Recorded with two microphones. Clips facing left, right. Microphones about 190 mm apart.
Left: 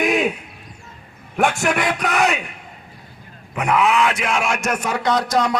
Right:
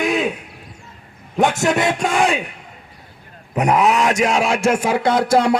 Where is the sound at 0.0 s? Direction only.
15° left (ahead or behind).